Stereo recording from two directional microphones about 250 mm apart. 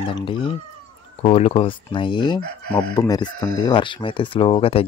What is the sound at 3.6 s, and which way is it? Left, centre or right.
Fowl, centre.